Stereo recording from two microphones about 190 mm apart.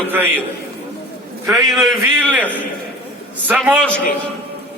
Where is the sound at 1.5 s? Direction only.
Centre (ahead or behind).